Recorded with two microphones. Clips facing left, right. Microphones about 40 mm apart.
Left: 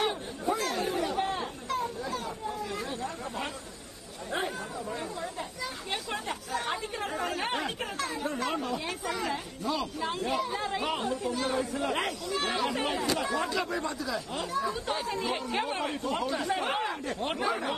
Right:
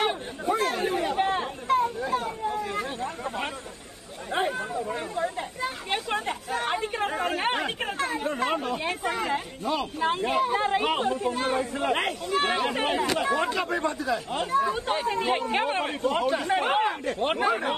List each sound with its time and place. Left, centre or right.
0.0 s chatter: right
6.8 s speech: right